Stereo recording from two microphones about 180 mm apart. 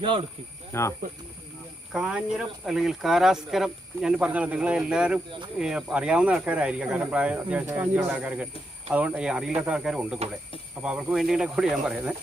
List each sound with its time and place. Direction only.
0.0 s speech: 30° right (ahead or behind)
0.7 s speech: 15° left (ahead or behind)
1.9 s speech: 5° right (ahead or behind)